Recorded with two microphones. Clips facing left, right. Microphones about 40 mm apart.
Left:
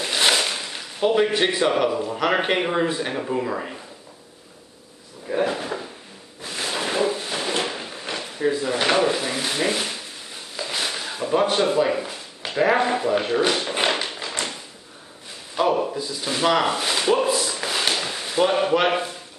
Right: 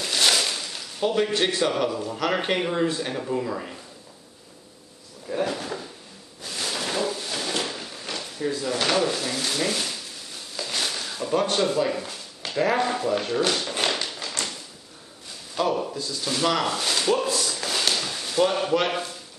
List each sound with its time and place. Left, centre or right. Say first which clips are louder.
0.0 s speech: left 2 dB; left
5.3 s drawer open or close: left 4 dB; centre
6.4 s a sound: left 3 dB; left